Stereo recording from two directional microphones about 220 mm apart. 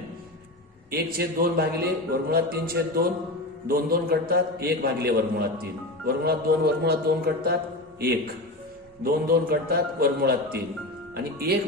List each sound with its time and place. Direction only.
0.8 s a man's voice: 45° right (ahead or behind)
9.0 s a man's voice: 45° right (ahead or behind)